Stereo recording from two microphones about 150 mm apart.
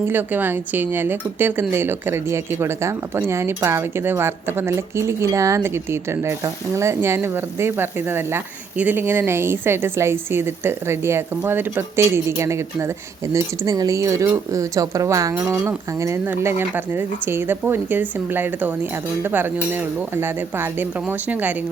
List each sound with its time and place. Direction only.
0.0 s speech: 15° right (ahead or behind)